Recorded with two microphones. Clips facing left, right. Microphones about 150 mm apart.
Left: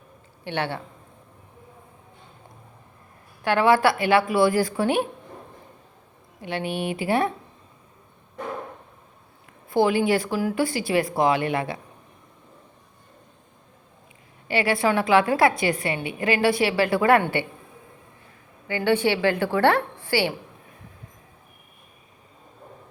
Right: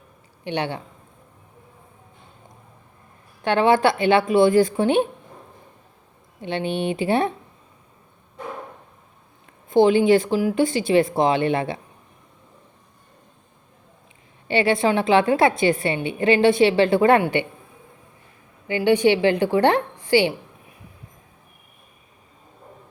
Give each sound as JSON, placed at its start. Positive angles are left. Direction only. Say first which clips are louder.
{"t": 0.4, "sound": "a man's voice", "louder": "right 2 dB", "side_deg": -20}
{"t": 3.4, "sound": "a woman's voice", "louder": "right 1 dB", "side_deg": -25}
{"t": 6.4, "sound": "a woman's voice", "louder": "right 3 dB", "side_deg": -25}
{"t": 9.6, "sound": "a woman's voice", "louder": "right 5 dB", "side_deg": -20}
{"t": 14.4, "sound": "a woman's voice", "louder": "right 3 dB", "side_deg": -25}
{"t": 18.8, "sound": "a woman's voice", "louder": "right 4 dB", "side_deg": -15}